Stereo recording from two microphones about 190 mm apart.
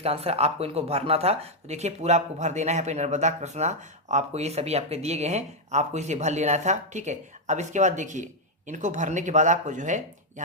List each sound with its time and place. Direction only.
0.0 s speech: 30° right (ahead or behind)